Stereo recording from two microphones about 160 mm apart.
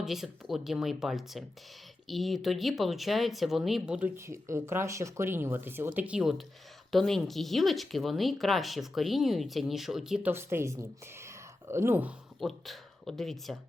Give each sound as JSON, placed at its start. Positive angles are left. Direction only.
{"t": 0.0, "sound": "speech", "side_deg": 0}
{"t": 10.3, "sound": "a woman's voice", "side_deg": -15}
{"t": 12.4, "sound": "speech", "side_deg": 0}